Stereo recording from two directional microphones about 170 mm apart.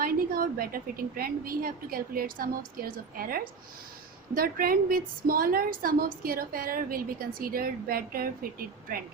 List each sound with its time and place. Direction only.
0.0 s a woman's voice: 60° right (ahead or behind)